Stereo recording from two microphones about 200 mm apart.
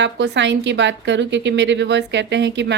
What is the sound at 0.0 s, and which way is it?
A woman's voice, 65° right (ahead or behind).